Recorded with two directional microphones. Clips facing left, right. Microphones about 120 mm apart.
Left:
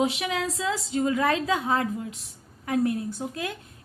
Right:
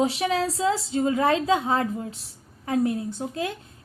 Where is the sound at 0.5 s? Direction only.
30° right (ahead or behind).